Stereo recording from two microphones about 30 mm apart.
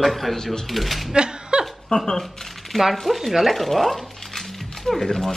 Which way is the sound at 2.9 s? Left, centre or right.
Centre.